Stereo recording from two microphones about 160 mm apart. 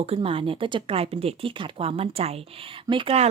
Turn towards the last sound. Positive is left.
turn(degrees=-35)  # may be behind; listen again after turning